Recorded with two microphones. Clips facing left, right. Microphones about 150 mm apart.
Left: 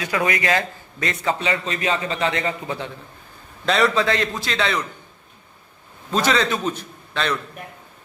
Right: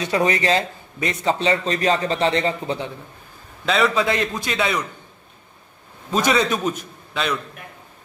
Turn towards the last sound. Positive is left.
turn(degrees=-10)  # may be behind; listen again after turning